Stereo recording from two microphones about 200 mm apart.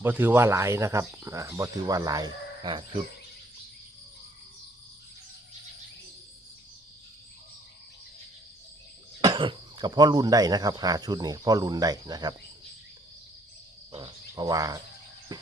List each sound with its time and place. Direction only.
0.0 s speech: 10° right (ahead or behind)
9.2 s speech: 25° right (ahead or behind)
13.9 s cricket: 20° right (ahead or behind)
15.3 s train: 20° right (ahead or behind)